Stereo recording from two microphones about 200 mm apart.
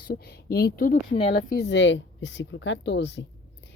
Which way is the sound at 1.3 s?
55° left (ahead or behind).